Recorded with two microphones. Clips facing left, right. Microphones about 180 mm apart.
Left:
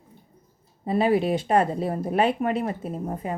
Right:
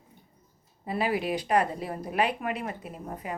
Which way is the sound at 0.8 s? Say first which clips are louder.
Left 7 dB; 25° left (ahead or behind).